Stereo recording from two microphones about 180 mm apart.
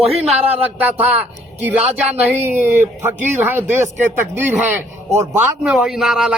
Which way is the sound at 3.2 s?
10° right (ahead or behind).